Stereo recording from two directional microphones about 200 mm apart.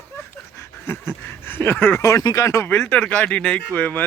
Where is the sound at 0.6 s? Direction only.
10° left (ahead or behind).